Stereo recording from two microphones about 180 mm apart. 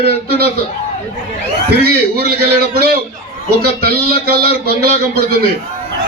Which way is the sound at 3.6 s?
60° right (ahead or behind).